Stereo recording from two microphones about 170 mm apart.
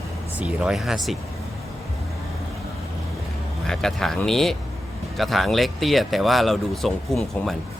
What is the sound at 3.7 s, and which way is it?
Speech, centre (ahead or behind).